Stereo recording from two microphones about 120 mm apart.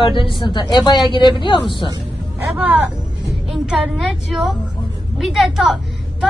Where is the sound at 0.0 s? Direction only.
45° left (ahead or behind).